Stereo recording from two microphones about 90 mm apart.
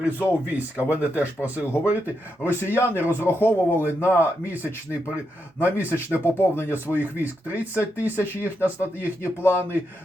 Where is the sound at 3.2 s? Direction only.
25° left (ahead or behind).